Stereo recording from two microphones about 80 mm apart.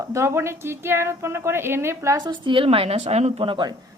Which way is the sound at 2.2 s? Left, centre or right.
Right.